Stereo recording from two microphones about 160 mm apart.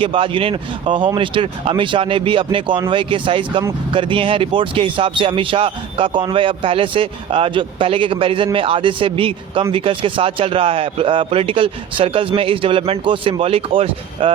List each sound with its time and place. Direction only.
0.0 s speech: 35° right (ahead or behind)